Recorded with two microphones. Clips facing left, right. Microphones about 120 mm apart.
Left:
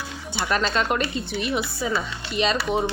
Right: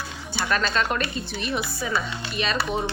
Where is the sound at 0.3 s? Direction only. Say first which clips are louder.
Left 1 dB; 20° left (ahead or behind).